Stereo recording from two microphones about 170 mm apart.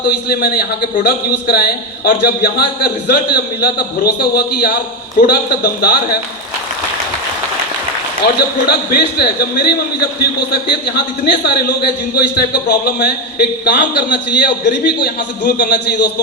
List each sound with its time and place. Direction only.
0.1 s a man's voice: 65° left (ahead or behind)
8.2 s a man's voice: 65° left (ahead or behind)
15.0 s a man's voice: 55° left (ahead or behind)